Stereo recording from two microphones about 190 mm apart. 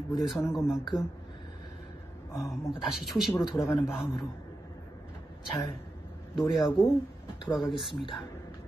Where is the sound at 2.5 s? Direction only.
Centre (ahead or behind).